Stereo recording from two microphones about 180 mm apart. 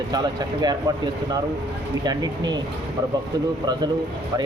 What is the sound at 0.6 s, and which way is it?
Speech, 20° right (ahead or behind).